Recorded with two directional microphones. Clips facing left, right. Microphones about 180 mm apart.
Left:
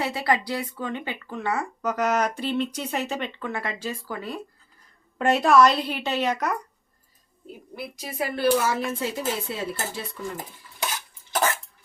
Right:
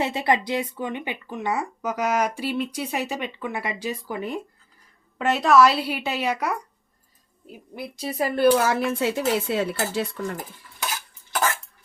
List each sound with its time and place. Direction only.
0.0 s speech: 25° right (ahead or behind)
5.1 s speech: centre (ahead or behind)
7.8 s speech: 25° right (ahead or behind)
8.2 s speech: 55° right (ahead or behind)